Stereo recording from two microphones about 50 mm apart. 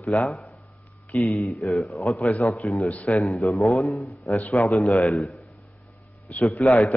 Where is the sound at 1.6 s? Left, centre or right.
Centre.